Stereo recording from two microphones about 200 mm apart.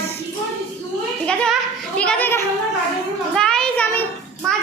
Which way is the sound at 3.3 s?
5° left (ahead or behind).